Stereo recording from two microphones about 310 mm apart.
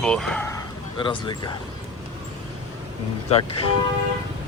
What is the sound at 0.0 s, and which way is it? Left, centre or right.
Speech, centre.